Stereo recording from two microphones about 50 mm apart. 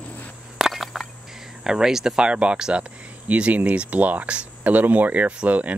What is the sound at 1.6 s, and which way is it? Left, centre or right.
Speech, centre.